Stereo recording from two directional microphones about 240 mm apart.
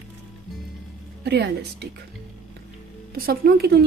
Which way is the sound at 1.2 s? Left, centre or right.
Right.